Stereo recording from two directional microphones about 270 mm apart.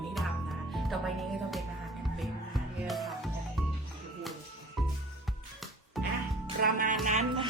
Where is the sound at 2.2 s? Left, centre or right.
Centre.